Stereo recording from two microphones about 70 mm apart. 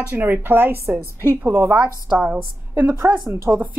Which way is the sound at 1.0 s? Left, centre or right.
Left.